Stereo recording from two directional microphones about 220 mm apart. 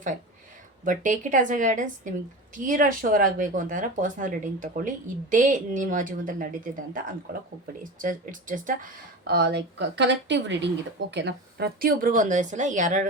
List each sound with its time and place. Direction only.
0.9 s speech: 35° right (ahead or behind)